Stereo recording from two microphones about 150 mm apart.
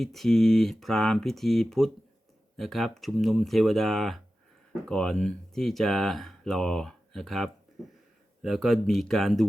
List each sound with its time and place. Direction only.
0.0 s speech: centre (ahead or behind)